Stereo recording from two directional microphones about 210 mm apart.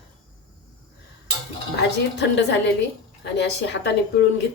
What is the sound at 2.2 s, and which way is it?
A woman's voice, 55° left (ahead or behind).